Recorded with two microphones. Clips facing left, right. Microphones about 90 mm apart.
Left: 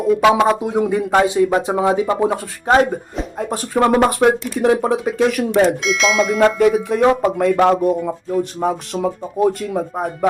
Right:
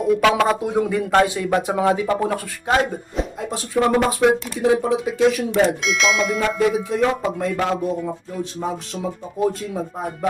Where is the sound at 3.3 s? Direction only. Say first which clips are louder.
Left 5 dB; 50° left (ahead or behind).